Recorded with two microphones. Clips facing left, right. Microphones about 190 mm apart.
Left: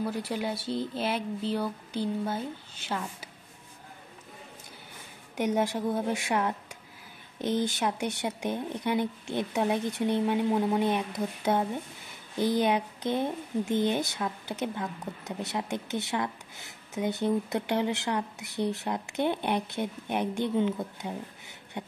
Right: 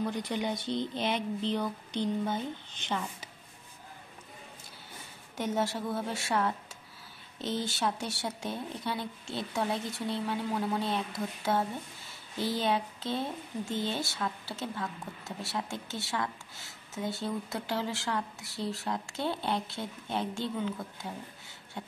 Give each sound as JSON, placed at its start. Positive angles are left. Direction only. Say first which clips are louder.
{"t": 0.0, "sound": "speech", "louder": "left 1 dB", "side_deg": 5}
{"t": 5.3, "sound": "speech", "louder": "left 4 dB", "side_deg": 15}